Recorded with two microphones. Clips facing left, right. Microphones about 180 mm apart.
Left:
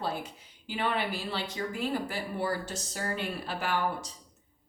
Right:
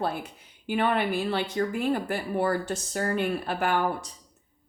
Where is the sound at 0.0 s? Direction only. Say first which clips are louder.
Right 4 dB; 55° right (ahead or behind).